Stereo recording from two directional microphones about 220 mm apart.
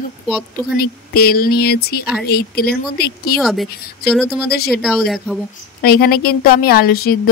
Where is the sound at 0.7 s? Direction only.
45° left (ahead or behind).